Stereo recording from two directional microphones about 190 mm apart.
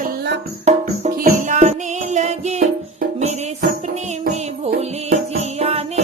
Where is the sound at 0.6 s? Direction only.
40° right (ahead or behind).